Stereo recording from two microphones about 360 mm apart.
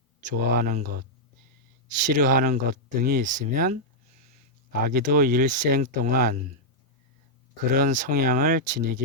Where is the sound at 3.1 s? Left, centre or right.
Right.